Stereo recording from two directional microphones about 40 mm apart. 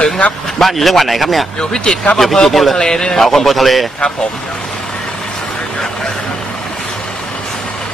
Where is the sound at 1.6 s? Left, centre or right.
Centre.